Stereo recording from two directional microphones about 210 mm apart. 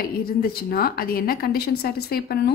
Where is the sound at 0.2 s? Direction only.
45° left (ahead or behind).